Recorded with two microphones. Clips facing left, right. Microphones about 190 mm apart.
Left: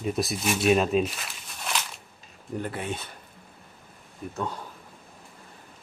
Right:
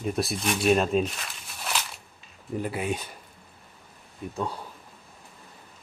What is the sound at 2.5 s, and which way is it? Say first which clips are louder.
Speech: right 3 dB; 10° right (ahead or behind).